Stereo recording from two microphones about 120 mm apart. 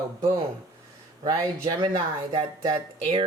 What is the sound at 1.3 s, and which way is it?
A woman's voice, 45° right (ahead or behind).